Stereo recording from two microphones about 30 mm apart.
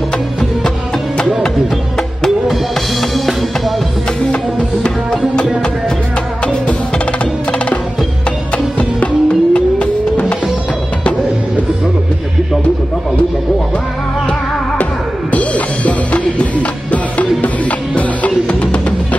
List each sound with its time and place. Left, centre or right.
3.0 s drum kit: centre
7.1 s music: left
15.3 s music: left